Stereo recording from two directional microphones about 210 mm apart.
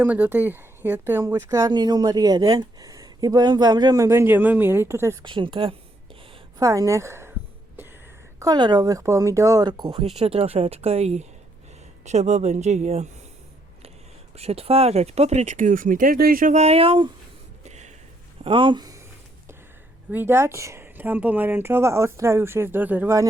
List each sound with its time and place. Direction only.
0.0 s speech: 10° right (ahead or behind)
8.4 s speech: 20° right (ahead or behind)
14.3 s speech: 30° right (ahead or behind)
17.6 s a sound: 35° right (ahead or behind)
18.4 s speech: 25° right (ahead or behind)
20.1 s speech: 10° right (ahead or behind)